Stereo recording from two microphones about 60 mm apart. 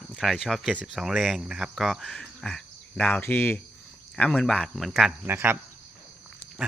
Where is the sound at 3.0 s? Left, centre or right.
Left.